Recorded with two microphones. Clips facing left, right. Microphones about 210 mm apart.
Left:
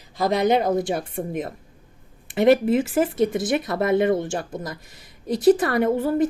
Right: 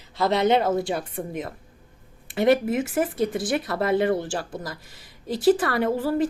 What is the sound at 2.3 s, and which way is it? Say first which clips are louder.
A woman's voice: left 3 dB; 25° left (ahead or behind).